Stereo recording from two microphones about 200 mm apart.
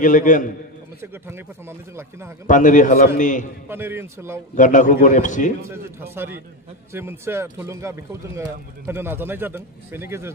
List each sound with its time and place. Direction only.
0.0 s a man's voice: 40° left (ahead or behind)
1.0 s a man's voice: 10° right (ahead or behind)
2.4 s a man's voice: 40° left (ahead or behind)
3.6 s a man's voice: 10° right (ahead or behind)
4.6 s a man's voice: 40° left (ahead or behind)
5.7 s a man's voice: 10° right (ahead or behind)